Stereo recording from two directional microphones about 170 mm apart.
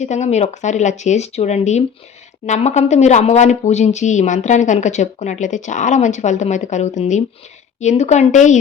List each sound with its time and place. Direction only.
0.0 s speech: 45° left (ahead or behind)